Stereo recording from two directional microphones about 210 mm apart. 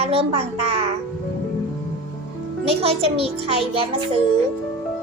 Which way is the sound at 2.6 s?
30° right (ahead or behind).